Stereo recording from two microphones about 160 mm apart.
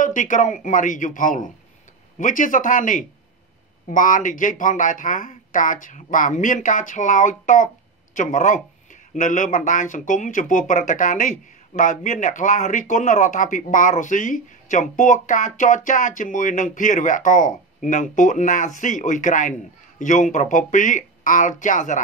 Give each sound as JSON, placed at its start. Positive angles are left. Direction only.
{"t": 0.0, "sound": "speech", "side_deg": 55}